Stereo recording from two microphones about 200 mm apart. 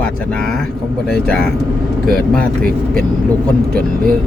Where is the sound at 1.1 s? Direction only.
5° left (ahead or behind).